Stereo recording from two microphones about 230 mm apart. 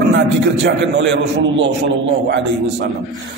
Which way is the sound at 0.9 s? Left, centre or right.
Right.